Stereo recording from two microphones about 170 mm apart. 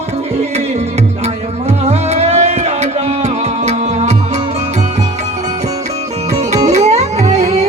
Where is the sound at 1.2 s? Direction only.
40° right (ahead or behind).